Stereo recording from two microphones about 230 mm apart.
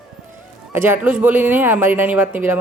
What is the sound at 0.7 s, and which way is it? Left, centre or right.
A woman's voice, centre.